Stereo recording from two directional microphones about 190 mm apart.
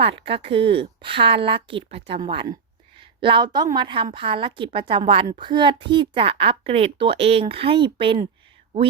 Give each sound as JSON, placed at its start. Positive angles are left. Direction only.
{"t": 0.0, "sound": "speech", "side_deg": -30}